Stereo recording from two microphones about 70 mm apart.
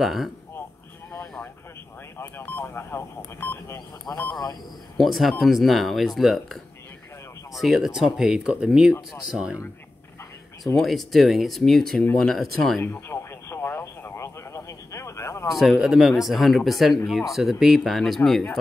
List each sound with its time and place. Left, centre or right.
0.0 s speech: centre
2.1 s a sound: left
3.2 s speech: left
4.1 s speech: left
4.9 s speech: centre
10.8 s speech: centre
13.1 s radio: left
15.5 s speech: centre